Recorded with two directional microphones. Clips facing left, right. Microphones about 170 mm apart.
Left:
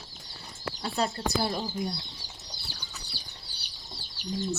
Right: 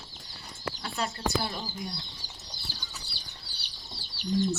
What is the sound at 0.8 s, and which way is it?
Speech, 35° left (ahead or behind).